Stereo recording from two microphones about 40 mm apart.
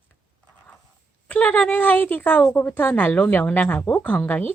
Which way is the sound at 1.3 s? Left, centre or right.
Left.